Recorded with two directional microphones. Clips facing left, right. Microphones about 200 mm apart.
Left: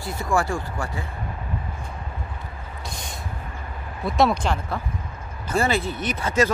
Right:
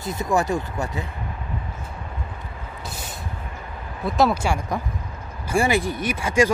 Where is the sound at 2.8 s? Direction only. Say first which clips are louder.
Even; 5° right (ahead or behind).